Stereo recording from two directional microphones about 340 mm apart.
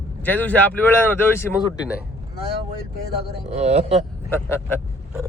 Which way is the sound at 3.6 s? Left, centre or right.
Centre.